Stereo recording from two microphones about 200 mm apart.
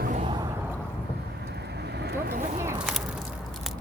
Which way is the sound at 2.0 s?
50° right (ahead or behind).